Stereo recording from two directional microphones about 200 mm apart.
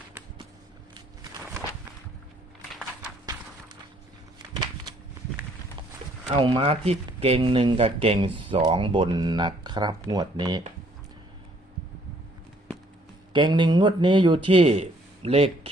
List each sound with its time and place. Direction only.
0.9 s walk: 20° right (ahead or behind)
6.3 s speech: 25° right (ahead or behind)
13.3 s speech: 25° right (ahead or behind)